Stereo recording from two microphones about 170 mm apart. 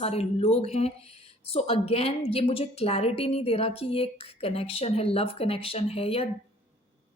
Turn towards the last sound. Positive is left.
turn(degrees=35)  # may be behind; listen again after turning